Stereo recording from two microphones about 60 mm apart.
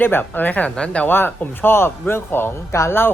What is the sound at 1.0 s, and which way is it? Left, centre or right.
A man's voice, left.